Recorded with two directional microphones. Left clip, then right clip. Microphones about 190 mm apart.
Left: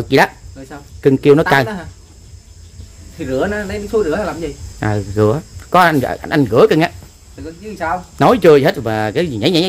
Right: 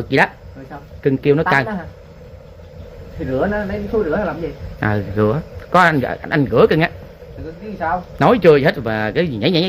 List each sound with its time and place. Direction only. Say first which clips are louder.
0.1 s speech: left 3 dB; 30° left (ahead or behind)
3.3 s speech: left 1 dB; 30° left (ahead or behind)
4.7 s speech: left 2 dB; 15° left (ahead or behind)